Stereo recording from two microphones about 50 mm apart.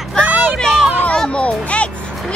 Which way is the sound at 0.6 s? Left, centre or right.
Centre.